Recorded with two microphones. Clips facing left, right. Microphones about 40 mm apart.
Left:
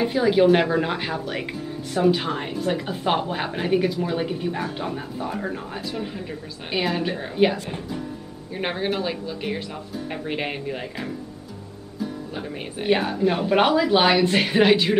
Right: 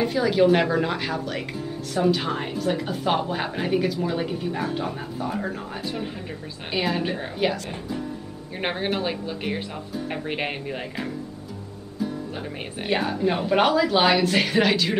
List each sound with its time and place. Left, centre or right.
0.0 s a woman's voice: centre
2.2 s a woman's voice: centre
7.3 s a woman's voice: centre
8.5 s speech: centre
12.8 s a woman's voice: centre